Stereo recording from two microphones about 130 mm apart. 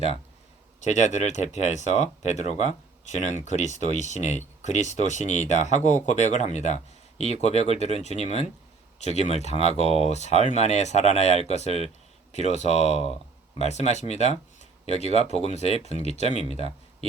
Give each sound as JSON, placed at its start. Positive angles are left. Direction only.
{"t": 0.8, "sound": "speech", "side_deg": 65}